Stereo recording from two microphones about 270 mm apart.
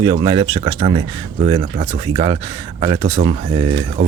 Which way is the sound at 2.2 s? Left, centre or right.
Centre.